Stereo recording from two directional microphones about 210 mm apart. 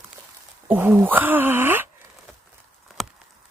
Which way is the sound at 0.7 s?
10° right (ahead or behind).